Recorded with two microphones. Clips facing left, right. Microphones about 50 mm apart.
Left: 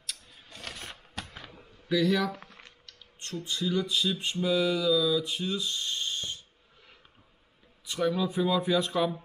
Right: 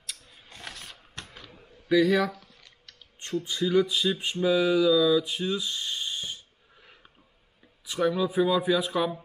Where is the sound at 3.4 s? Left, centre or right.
Right.